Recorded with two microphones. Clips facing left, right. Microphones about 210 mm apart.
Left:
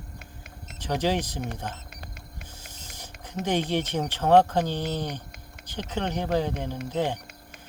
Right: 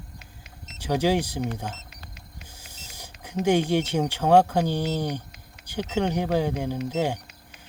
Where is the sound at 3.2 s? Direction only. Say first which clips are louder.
Right 5 dB; 10° right (ahead or behind).